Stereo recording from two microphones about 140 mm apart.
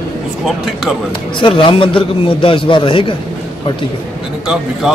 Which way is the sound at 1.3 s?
35° left (ahead or behind).